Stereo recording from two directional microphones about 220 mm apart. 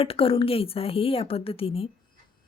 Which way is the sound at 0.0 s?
25° left (ahead or behind).